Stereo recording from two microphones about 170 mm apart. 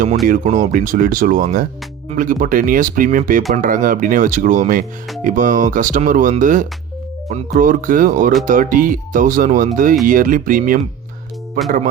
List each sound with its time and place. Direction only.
0.3 s speech: 50° right (ahead or behind)